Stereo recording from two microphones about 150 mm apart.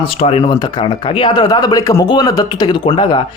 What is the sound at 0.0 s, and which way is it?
Speech, 40° left (ahead or behind).